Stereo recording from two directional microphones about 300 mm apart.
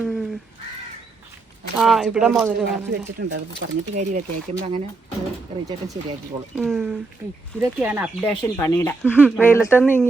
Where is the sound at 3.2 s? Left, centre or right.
Right.